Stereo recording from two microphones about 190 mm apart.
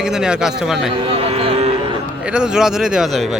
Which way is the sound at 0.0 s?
5° right (ahead or behind).